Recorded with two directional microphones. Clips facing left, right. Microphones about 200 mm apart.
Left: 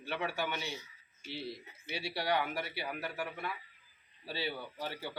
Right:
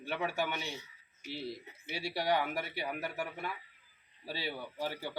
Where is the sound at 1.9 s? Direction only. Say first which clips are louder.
Right 1 dB; 45° right (ahead or behind).